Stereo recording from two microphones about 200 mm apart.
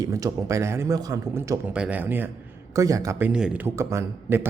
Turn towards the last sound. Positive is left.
turn(degrees=-15)  # may be behind; listen again after turning